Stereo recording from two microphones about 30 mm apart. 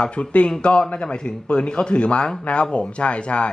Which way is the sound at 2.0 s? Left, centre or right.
Left.